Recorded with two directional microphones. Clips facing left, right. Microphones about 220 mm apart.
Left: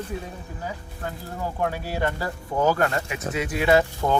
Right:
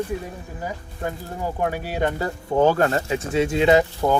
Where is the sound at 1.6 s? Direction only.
15° right (ahead or behind).